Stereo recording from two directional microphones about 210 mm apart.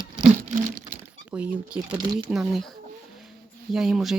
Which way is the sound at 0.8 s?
10° right (ahead or behind).